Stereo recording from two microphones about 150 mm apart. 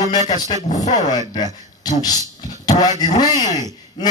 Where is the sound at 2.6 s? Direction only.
25° left (ahead or behind).